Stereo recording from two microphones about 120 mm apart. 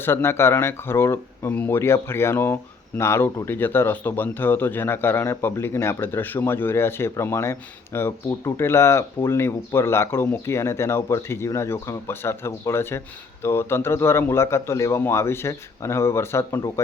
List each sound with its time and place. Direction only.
0.0 s speech: 20° left (ahead or behind)